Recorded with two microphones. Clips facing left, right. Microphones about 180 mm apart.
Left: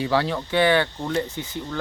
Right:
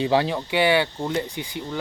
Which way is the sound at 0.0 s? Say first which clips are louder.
Right 2 dB; 15° right (ahead or behind).